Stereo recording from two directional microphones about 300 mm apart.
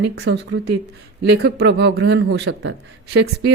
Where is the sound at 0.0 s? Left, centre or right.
Right.